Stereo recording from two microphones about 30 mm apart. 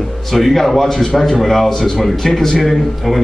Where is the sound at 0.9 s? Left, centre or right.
Centre.